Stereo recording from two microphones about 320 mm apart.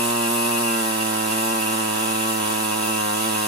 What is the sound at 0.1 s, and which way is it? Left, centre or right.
Chainsaw, right.